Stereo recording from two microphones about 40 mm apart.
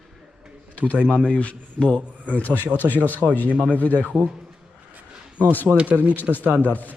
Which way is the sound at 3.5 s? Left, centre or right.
Right.